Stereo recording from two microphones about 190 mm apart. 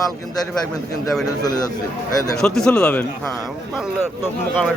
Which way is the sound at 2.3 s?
5° left (ahead or behind).